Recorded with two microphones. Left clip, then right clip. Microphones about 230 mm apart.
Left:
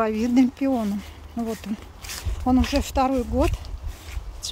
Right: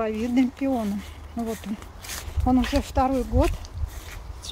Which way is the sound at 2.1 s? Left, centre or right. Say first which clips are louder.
Even; centre.